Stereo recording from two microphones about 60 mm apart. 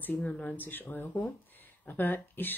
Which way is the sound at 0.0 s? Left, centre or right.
Left.